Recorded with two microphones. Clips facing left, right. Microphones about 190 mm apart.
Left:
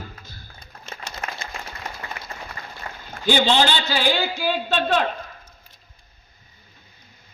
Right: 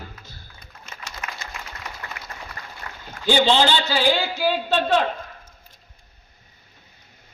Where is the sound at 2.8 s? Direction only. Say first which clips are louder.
Left 4 dB; 30° left (ahead or behind).